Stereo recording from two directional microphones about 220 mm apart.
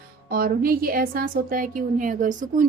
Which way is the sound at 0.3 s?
40° right (ahead or behind).